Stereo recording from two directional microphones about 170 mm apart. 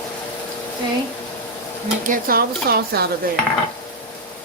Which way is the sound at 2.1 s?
60° right (ahead or behind).